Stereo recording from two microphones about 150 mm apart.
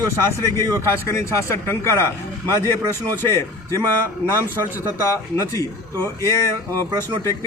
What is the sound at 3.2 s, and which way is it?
Speech, 15° left (ahead or behind).